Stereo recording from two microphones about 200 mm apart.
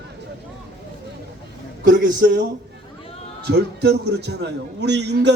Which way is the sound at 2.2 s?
55° right (ahead or behind).